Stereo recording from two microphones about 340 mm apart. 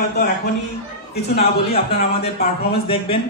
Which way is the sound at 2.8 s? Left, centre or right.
Centre.